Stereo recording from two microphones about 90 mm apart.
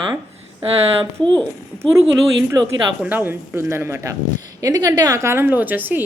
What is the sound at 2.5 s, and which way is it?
Speech, 30° right (ahead or behind).